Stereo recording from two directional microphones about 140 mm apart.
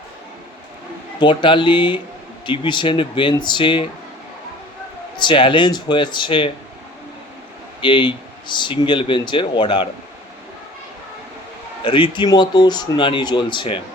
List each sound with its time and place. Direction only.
1.2 s speech: 35° left (ahead or behind)
5.1 s speech: 35° left (ahead or behind)
7.8 s speech: 35° left (ahead or behind)
11.8 s speech: 40° left (ahead or behind)